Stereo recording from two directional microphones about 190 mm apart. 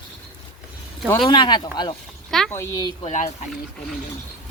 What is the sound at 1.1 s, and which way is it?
Speech, 25° left (ahead or behind).